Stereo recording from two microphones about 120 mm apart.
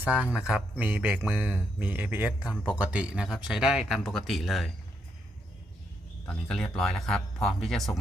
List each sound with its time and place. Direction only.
0.0 s speech: 10° right (ahead or behind)
6.2 s speech: 5° left (ahead or behind)